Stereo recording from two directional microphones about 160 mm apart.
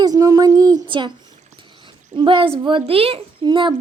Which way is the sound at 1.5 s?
30° right (ahead or behind).